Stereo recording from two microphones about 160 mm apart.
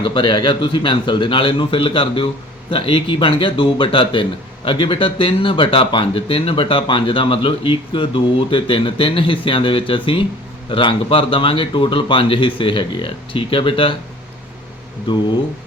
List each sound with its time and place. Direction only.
0.0 s a man's voice: 30° left (ahead or behind)